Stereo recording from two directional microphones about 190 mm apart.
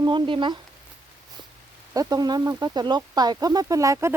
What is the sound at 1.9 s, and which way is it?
Speech, 20° right (ahead or behind).